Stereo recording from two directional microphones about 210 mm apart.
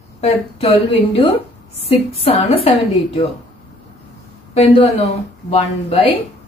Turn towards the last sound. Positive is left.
turn(degrees=30)  # may be behind; listen again after turning